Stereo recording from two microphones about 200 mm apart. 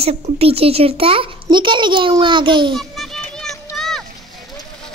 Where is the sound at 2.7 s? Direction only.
Centre (ahead or behind).